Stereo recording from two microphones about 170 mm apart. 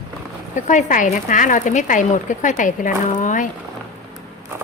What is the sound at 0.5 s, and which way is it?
A woman's voice, 45° left (ahead or behind).